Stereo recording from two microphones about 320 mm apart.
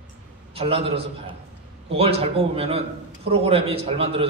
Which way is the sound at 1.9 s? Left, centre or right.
Centre.